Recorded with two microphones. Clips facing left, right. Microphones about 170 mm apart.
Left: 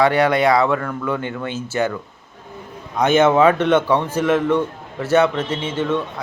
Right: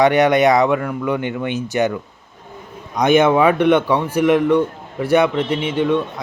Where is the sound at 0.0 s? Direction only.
20° right (ahead or behind).